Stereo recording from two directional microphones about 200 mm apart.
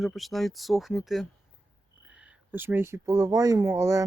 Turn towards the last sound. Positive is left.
turn(degrees=-15)  # may be behind; listen again after turning